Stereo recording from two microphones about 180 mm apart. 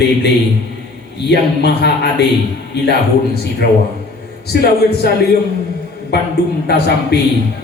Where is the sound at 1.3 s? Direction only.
70° left (ahead or behind).